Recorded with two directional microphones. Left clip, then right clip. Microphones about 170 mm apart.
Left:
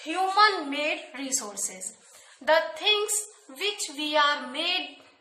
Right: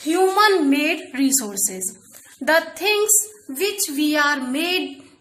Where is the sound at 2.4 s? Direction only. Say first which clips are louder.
Right 5 dB; 25° right (ahead or behind).